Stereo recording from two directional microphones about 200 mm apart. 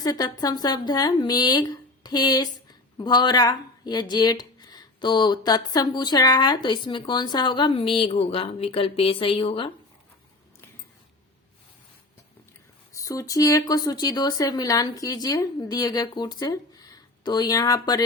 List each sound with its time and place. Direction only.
0.0 s a woman's voice: 20° left (ahead or behind)
12.9 s a woman's voice: 15° left (ahead or behind)